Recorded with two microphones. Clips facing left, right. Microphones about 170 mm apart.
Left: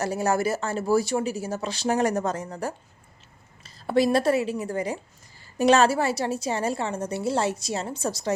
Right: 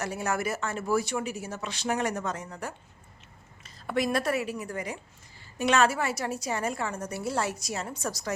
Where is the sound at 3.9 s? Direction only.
30° left (ahead or behind).